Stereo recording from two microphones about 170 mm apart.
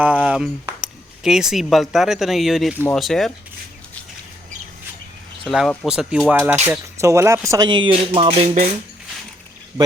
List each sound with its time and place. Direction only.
0.0 s speech: 10° right (ahead or behind)
5.5 s speech: centre (ahead or behind); by 8.7 s 40° right (ahead or behind)